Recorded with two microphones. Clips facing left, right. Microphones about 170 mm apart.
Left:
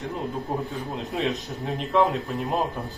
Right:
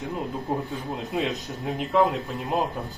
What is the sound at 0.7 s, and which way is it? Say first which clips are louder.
Speech: right 1 dB; centre (ahead or behind).